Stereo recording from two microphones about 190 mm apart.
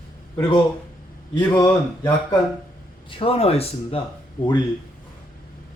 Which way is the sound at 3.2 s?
30° left (ahead or behind).